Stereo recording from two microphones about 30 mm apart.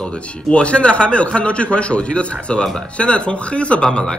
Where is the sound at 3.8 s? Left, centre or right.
Left.